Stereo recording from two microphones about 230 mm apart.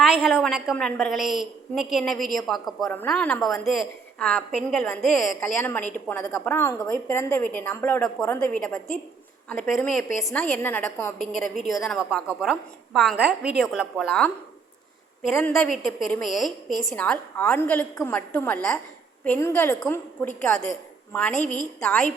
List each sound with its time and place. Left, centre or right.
0.0 s a woman's voice: centre
15.3 s a woman's voice: centre
21.1 s a woman's voice: centre